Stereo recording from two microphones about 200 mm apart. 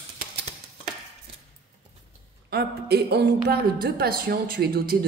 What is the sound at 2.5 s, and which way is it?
A woman's voice, 55° right (ahead or behind).